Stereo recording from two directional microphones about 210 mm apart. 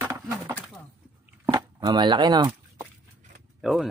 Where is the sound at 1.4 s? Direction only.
20° right (ahead or behind).